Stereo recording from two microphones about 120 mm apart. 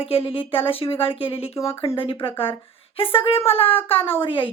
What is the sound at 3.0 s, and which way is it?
Speech, 55° left (ahead or behind).